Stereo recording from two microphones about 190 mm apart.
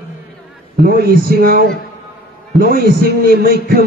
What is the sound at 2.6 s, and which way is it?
Speech, 50° right (ahead or behind).